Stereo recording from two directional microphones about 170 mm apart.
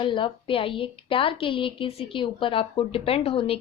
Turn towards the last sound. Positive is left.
turn(degrees=35)  # may be behind; listen again after turning